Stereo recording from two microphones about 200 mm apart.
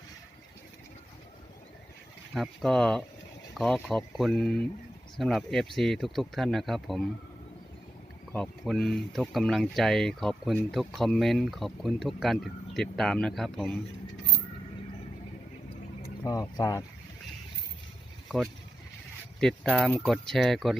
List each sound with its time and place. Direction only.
2.3 s speech: centre (ahead or behind)
8.3 s speech: 5° left (ahead or behind)
16.2 s speech: 20° left (ahead or behind)
19.4 s speech: 5° left (ahead or behind)